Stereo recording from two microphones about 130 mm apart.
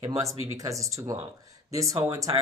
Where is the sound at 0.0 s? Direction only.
25° right (ahead or behind).